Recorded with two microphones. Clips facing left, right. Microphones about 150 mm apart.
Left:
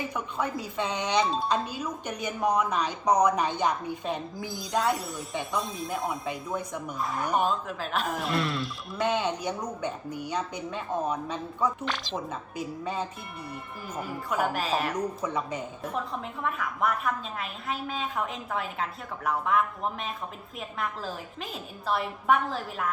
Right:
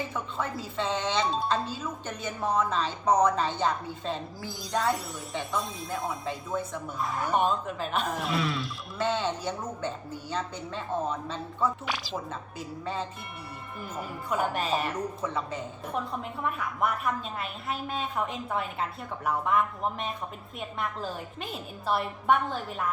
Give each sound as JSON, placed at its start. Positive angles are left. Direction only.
{"t": 0.1, "sound": "speech", "side_deg": 15}
{"t": 1.2, "sound": "a woman's voice", "side_deg": 0}
{"t": 1.5, "sound": "speech", "side_deg": 15}
{"t": 4.5, "sound": "a woman's voice", "side_deg": 0}
{"t": 6.6, "sound": "speech", "side_deg": 15}
{"t": 7.0, "sound": "a woman's voice", "side_deg": 0}
{"t": 9.0, "sound": "speech", "side_deg": 15}
{"t": 11.9, "sound": "speech", "side_deg": -5}
{"t": 12.3, "sound": "speech", "side_deg": 15}
{"t": 14.3, "sound": "a woman's voice", "side_deg": 0}
{"t": 15.2, "sound": "speech", "side_deg": 15}
{"t": 16.4, "sound": "a woman's voice", "side_deg": 0}